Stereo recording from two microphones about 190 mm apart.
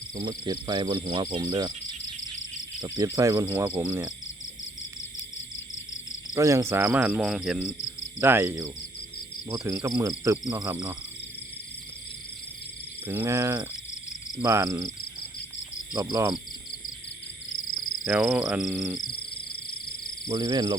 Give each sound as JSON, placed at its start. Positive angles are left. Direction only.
{"t": 0.2, "sound": "cricket", "side_deg": -25}
{"t": 2.8, "sound": "cricket", "side_deg": -20}
{"t": 6.3, "sound": "speech", "side_deg": -15}
{"t": 13.1, "sound": "speech", "side_deg": -15}
{"t": 18.0, "sound": "speech", "side_deg": -5}
{"t": 20.2, "sound": "cricket", "side_deg": -20}